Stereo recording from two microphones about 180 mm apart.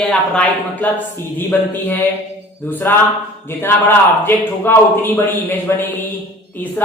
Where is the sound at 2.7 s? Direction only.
10° left (ahead or behind).